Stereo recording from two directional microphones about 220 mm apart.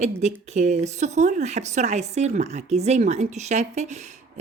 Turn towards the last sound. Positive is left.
turn(degrees=-30)  # may be behind; listen again after turning